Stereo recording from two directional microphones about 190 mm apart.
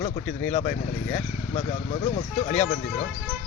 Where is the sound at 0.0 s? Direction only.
40° left (ahead or behind).